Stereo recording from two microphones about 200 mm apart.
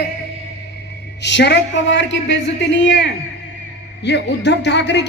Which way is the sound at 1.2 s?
60° left (ahead or behind).